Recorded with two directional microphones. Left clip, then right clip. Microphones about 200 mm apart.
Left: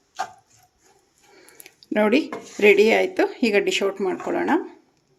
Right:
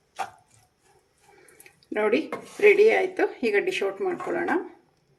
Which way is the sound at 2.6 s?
55° left (ahead or behind).